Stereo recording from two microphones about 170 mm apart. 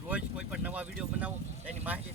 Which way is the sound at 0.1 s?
5° right (ahead or behind).